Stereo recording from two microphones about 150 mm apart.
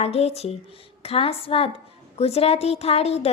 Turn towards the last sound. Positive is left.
turn(degrees=45)  # may be behind; listen again after turning